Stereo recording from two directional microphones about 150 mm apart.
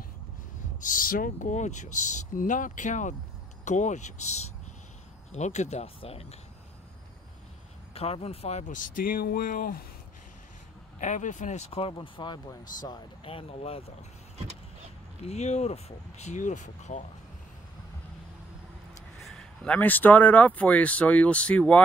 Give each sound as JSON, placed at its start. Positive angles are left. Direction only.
{"t": 0.7, "sound": "speech", "side_deg": 60}
{"t": 7.9, "sound": "speech", "side_deg": 40}
{"t": 11.0, "sound": "speech", "side_deg": 55}
{"t": 15.2, "sound": "speech", "side_deg": 45}
{"t": 19.1, "sound": "speech", "side_deg": 5}